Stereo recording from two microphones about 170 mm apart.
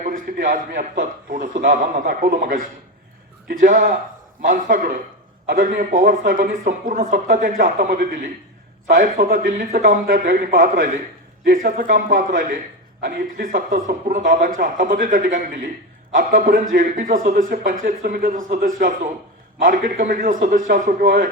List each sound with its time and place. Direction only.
0.0 s a man's voice: 50° right (ahead or behind)